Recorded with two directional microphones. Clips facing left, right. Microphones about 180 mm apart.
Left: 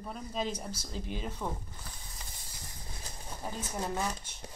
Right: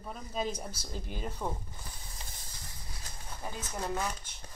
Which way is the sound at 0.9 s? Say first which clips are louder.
Left 3 dB; 50° right (ahead or behind).